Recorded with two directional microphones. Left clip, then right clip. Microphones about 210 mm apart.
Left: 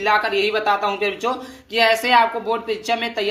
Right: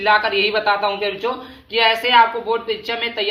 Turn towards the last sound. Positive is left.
turn(degrees=25)  # may be behind; listen again after turning